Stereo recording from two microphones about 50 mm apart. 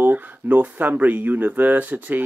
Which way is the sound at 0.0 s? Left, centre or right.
Right.